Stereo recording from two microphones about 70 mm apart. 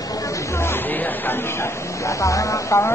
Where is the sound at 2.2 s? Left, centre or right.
Left.